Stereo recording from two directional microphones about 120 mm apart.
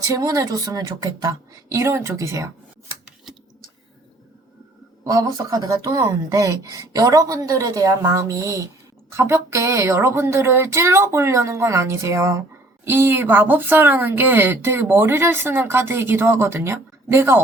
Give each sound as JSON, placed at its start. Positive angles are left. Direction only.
{"t": 0.1, "sound": "speech", "side_deg": -25}
{"t": 5.0, "sound": "speech", "side_deg": -30}